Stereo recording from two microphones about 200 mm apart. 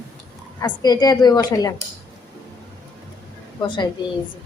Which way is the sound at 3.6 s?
25° left (ahead or behind).